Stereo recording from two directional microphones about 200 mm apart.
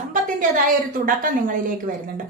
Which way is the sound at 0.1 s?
40° right (ahead or behind).